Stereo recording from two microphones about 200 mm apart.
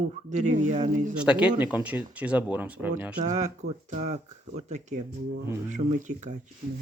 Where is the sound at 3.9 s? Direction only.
35° right (ahead or behind).